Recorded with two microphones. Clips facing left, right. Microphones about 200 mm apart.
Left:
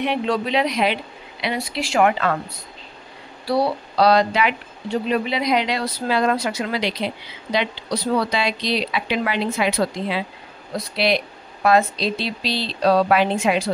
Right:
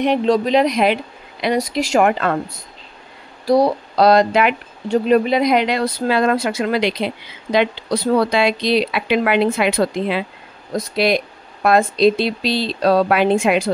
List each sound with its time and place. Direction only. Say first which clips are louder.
0.0 s speech: right 6 dB; 40° right (ahead or behind)
3.4 s speech: right 6 dB; 45° right (ahead or behind)
10.7 s speech: right 4 dB; 45° right (ahead or behind)